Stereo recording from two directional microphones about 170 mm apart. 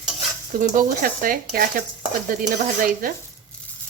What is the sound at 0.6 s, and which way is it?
Speech, 50° right (ahead or behind).